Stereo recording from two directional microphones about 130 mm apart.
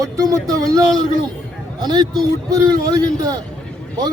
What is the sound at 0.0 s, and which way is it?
Speech, 25° right (ahead or behind).